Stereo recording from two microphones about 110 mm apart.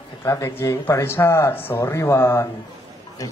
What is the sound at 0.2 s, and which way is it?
A man's voice, 25° left (ahead or behind).